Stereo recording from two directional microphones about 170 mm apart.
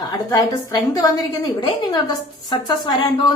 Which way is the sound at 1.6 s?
25° left (ahead or behind).